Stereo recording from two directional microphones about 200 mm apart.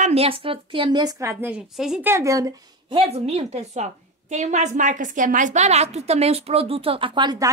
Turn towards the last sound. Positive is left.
turn(degrees=-20)  # may be behind; listen again after turning